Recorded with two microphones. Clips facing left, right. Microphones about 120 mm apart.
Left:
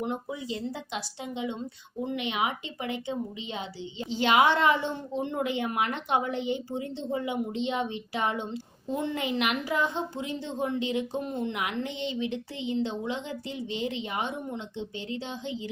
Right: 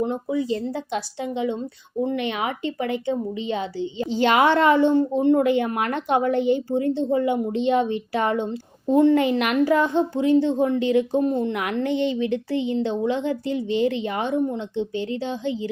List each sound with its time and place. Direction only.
0.0 s speech: 35° right (ahead or behind)
2.0 s a woman's voice: 50° right (ahead or behind)